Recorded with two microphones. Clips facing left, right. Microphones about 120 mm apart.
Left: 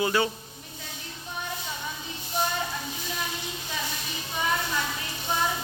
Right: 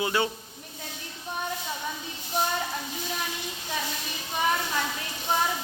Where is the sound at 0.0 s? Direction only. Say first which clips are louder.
Left 2 dB; 20° right (ahead or behind).